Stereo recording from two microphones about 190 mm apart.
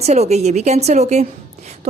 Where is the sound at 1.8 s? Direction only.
35° right (ahead or behind).